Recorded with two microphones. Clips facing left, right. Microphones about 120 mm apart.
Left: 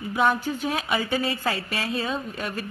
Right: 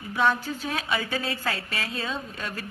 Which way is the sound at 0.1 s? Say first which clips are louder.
Left 1 dB; 20° left (ahead or behind).